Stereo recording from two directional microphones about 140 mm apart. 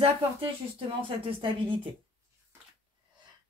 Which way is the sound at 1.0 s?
40° right (ahead or behind).